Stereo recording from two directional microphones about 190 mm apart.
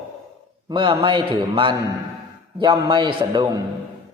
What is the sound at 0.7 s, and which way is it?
A man's voice, 25° right (ahead or behind).